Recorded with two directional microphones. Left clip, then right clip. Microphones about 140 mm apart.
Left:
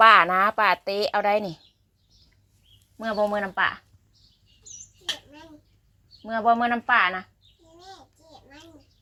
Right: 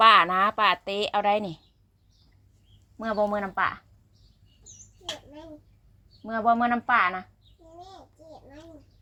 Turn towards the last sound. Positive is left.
turn(degrees=15)  # may be behind; listen again after turning